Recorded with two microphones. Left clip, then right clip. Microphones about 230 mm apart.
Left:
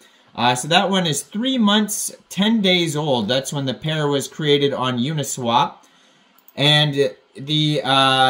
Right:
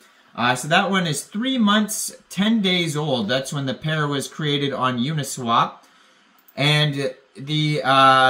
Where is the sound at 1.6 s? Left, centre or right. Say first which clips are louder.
Left 1 dB; centre.